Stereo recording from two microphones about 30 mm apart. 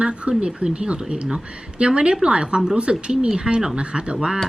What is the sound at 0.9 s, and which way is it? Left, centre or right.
Speech, right.